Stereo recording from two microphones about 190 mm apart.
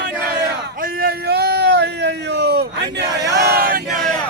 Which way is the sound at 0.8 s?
55° right (ahead or behind).